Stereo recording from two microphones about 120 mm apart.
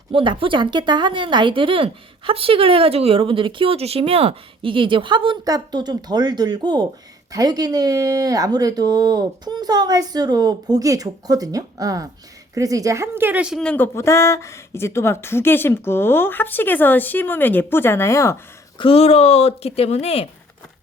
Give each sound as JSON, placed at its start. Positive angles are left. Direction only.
{"t": 0.1, "sound": "speech", "side_deg": -45}
{"t": 13.6, "sound": "speech", "side_deg": 10}
{"t": 18.8, "sound": "speech", "side_deg": 55}